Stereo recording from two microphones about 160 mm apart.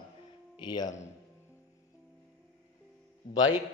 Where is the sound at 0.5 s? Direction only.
25° left (ahead or behind).